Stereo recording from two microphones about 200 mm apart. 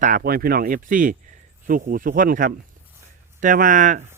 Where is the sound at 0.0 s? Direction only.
45° right (ahead or behind).